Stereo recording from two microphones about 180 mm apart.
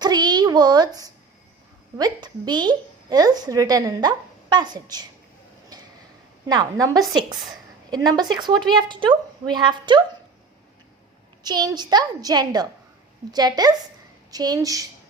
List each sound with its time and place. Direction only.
0.0 s a sound: 25° right (ahead or behind)
2.0 s a woman's voice: 20° right (ahead or behind)
6.5 s a woman's voice: 20° right (ahead or behind)
11.4 s a woman's voice: 25° right (ahead or behind)